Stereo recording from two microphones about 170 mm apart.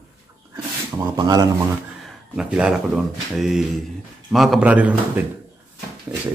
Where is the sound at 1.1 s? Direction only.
20° right (ahead or behind).